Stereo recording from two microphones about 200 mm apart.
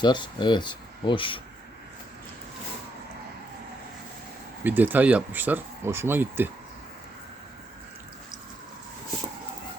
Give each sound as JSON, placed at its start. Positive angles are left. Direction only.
{"t": 0.0, "sound": "speech", "side_deg": 20}
{"t": 4.6, "sound": "speech", "side_deg": -10}